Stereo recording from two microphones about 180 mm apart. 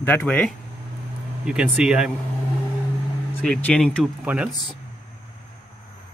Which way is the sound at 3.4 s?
5° left (ahead or behind).